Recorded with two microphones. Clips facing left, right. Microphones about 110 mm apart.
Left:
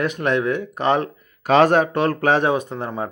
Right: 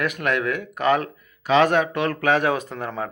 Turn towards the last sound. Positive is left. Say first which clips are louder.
# left 2 dB
turn(degrees=25)  # may be behind; listen again after turning